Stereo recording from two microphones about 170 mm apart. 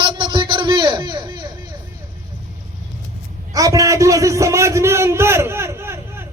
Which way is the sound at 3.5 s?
20° right (ahead or behind).